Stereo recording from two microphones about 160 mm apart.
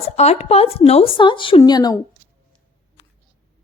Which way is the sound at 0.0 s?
40° left (ahead or behind).